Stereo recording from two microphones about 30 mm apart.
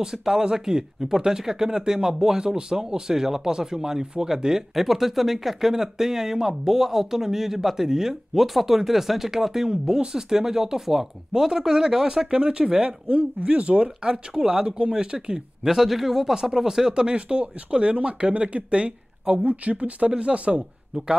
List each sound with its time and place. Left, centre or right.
0.3 s speech: right
4.7 s speech: centre; by 12.9 s right
13.1 s speech: right
14.0 s speech: right
15.6 s speech: centre; by 19.3 s right
19.3 s speech: right
20.1 s speech: right